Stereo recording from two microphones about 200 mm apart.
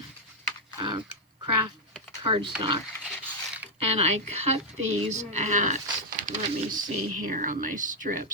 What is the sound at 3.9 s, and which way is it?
Speech, 30° right (ahead or behind).